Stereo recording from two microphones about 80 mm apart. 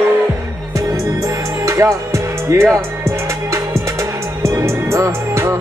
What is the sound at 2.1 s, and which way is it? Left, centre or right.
Music, right.